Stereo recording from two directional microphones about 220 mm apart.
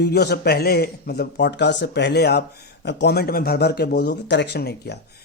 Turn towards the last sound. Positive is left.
turn(degrees=50)  # may be behind; listen again after turning